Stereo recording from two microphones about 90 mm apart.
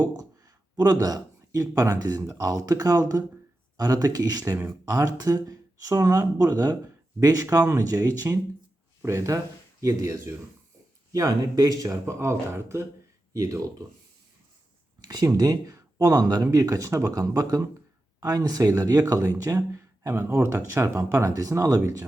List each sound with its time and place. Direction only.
0.8 s speech: 45° right (ahead or behind)
15.0 s speech: 45° right (ahead or behind)